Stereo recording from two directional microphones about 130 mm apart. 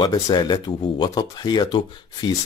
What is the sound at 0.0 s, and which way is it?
Speech, 35° left (ahead or behind).